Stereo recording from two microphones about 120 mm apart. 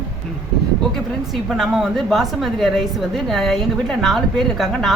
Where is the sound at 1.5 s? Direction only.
Centre (ahead or behind).